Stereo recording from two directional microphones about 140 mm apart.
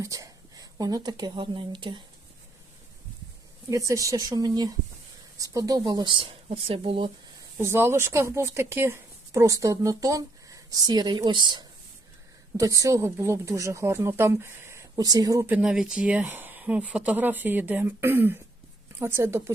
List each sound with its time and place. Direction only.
0.0 s speech: 25° right (ahead or behind)
3.7 s speech: 20° right (ahead or behind); by 7.1 s 40° right (ahead or behind)
7.6 s speech: 20° right (ahead or behind)
14.9 s speech: 30° right (ahead or behind)
15.4 s speech: 10° right (ahead or behind)